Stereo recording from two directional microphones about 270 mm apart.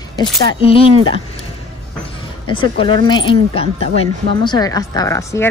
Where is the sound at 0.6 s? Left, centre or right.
Left.